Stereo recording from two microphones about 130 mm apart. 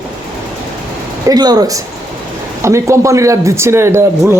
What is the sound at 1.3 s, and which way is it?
A man's voice, 30° right (ahead or behind).